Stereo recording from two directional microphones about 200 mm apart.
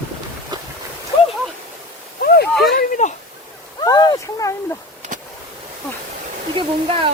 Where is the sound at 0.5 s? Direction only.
20° right (ahead or behind).